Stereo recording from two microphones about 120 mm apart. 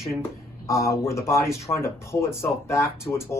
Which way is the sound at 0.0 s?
25° left (ahead or behind).